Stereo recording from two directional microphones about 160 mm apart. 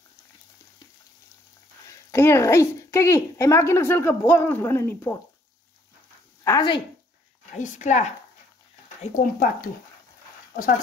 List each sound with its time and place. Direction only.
2.0 s speech: 15° left (ahead or behind)
6.4 s speech: 25° left (ahead or behind)
7.5 s speech: 50° left (ahead or behind)